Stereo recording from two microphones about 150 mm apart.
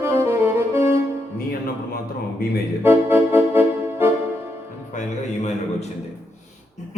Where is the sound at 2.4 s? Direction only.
90° left.